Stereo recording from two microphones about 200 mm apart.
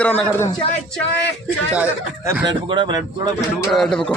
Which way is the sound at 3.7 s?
Centre (ahead or behind).